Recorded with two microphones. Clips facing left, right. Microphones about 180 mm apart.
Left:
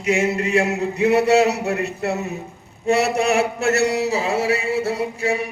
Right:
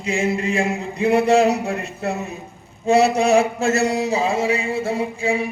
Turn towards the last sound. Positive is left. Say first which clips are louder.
# right 1 dB
turn(degrees=70)  # may be behind; listen again after turning